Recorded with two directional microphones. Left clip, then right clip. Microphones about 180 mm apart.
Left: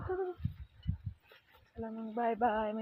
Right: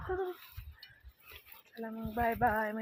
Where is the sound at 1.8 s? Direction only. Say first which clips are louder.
Right 1 dB; 10° right (ahead or behind).